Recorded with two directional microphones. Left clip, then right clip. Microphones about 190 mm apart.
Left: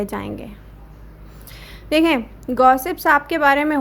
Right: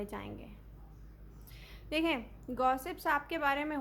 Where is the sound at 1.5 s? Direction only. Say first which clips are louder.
Left 17 dB; 30° left (ahead or behind).